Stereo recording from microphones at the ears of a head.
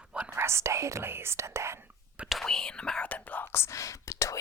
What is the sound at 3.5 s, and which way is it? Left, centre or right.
Whispering, left.